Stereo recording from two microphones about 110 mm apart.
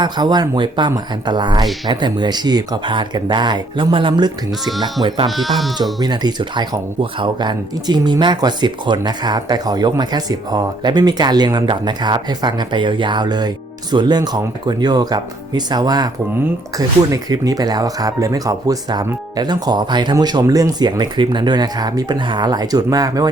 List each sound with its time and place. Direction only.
0.0 s speech: 40° right (ahead or behind)
5.4 s speech: centre (ahead or behind)
6.0 s speech: 40° right (ahead or behind)